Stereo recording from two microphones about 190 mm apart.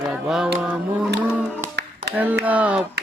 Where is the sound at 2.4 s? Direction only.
10° right (ahead or behind).